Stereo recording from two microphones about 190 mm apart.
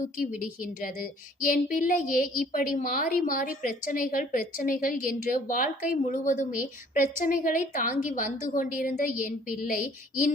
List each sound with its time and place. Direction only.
0.6 s a woman's voice: 45° left (ahead or behind)